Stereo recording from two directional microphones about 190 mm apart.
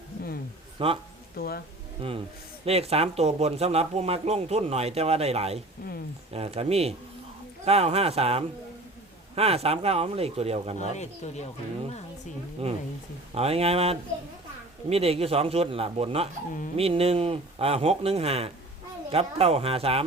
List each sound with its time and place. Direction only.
0.8 s a man's voice: 30° right (ahead or behind)
1.4 s speech: 55° left (ahead or behind)
2.0 s a man's voice: 30° right (ahead or behind)
10.9 s speech: 35° left (ahead or behind)
12.6 s speech: 30° right (ahead or behind)